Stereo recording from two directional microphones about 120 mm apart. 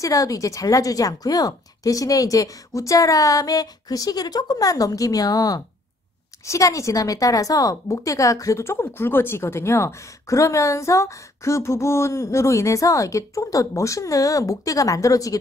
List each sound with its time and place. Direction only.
0.0 s a woman's voice: 30° left (ahead or behind)